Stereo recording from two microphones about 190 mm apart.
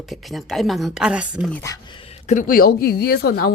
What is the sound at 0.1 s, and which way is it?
Speech, centre (ahead or behind).